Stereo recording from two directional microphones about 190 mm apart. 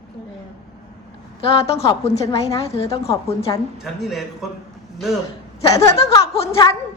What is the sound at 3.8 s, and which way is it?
Speech, centre (ahead or behind).